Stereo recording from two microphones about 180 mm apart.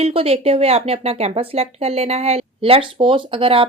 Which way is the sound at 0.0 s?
35° right (ahead or behind).